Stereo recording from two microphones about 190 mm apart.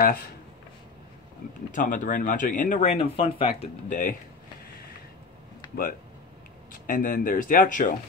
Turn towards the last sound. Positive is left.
turn(degrees=45)  # may be behind; listen again after turning